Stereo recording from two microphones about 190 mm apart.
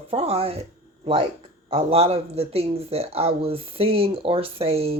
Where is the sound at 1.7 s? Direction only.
35° right (ahead or behind).